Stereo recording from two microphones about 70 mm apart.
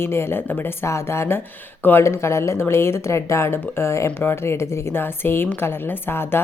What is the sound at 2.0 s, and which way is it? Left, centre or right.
Speech, left.